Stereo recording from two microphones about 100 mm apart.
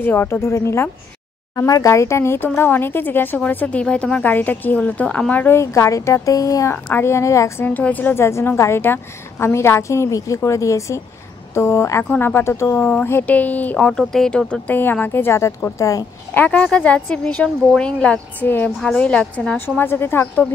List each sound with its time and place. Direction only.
0.0 s speech: 20° left (ahead or behind)
16.3 s speech: 15° left (ahead or behind)